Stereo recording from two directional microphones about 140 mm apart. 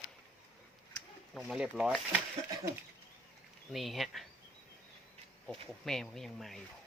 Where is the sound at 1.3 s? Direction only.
5° right (ahead or behind).